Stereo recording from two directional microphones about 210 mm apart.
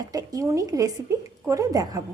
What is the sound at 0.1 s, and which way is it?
Speech, 15° right (ahead or behind).